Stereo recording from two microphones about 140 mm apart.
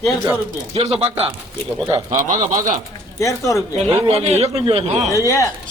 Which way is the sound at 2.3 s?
65° right (ahead or behind).